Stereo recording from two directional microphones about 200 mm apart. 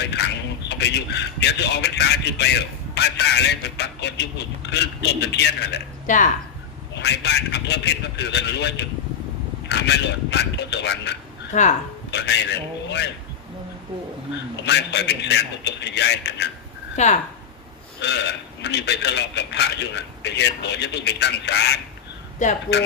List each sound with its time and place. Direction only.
0.0 s a sound: 60° left (ahead or behind)
0.7 s a man's voice: 60° left (ahead or behind)
6.1 s speech: 40° left (ahead or behind)
6.9 s a man's voice: 60° left (ahead or behind)
11.5 s speech: 35° left (ahead or behind)
12.1 s a man's voice: 60° left (ahead or behind)
14.6 s a man's voice: 60° left (ahead or behind)
17.0 s speech: 35° left (ahead or behind)
18.0 s a man's voice: 60° left (ahead or behind)